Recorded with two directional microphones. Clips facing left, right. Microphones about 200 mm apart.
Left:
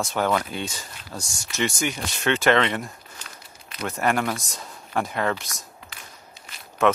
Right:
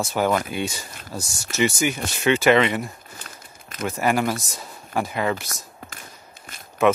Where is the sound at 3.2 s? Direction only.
45° right (ahead or behind).